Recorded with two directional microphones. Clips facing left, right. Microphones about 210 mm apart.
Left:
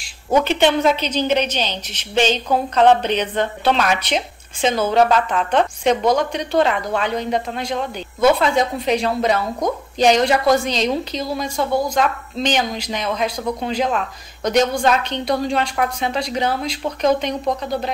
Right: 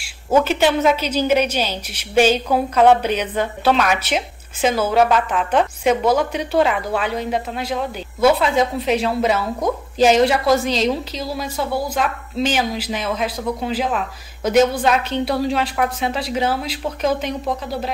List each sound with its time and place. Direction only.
0.0 s a woman's voice: 5° right (ahead or behind)